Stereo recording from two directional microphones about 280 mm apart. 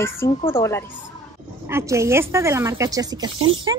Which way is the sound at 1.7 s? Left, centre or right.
Centre.